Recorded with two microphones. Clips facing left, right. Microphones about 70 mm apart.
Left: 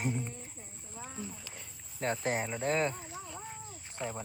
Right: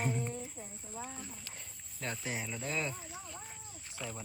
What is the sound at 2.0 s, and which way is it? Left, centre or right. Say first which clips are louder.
Speech: left 7 dB; left.